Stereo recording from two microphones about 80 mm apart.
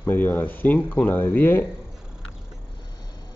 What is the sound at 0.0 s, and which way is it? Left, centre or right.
Speech, left.